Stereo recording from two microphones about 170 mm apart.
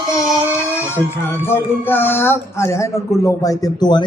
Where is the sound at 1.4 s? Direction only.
15° left (ahead or behind).